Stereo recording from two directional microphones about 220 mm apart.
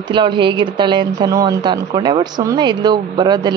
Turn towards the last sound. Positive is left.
turn(degrees=-20)  # may be behind; listen again after turning